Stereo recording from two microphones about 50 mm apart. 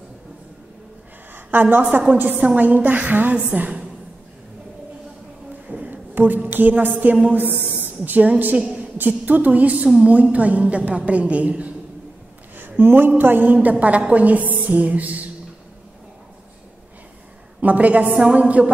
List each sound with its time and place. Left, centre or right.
1.3 s a woman's voice: right
5.7 s a woman's voice: right
8.5 s a sound: right
8.9 s a woman's voice: right
12.5 s a sound: right
13.1 s a woman's voice: right
17.6 s a woman's voice: right